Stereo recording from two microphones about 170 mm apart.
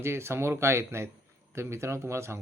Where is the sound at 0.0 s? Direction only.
15° right (ahead or behind).